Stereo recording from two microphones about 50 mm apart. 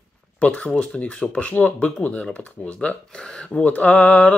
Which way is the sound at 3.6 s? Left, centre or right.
Left.